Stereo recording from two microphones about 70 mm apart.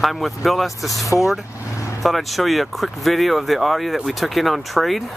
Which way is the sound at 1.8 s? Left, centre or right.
Left.